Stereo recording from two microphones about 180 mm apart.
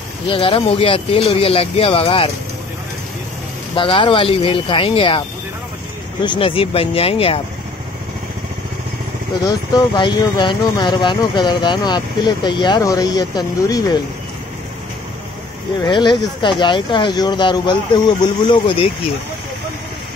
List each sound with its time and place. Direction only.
0.3 s speech: 30° left (ahead or behind)
3.7 s speech: 30° left (ahead or behind)
6.2 s speech: 30° left (ahead or behind)
9.5 s speech: 25° left (ahead or behind)
15.8 s speech: 25° left (ahead or behind)